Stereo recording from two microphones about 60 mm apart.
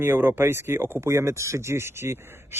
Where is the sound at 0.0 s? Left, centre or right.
Right.